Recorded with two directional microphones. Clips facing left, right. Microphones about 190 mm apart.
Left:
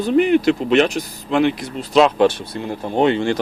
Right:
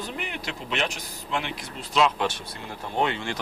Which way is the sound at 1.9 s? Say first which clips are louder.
Left 10 dB; 35° left (ahead or behind).